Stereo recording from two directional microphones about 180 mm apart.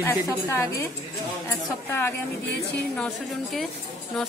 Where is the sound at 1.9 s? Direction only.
10° left (ahead or behind).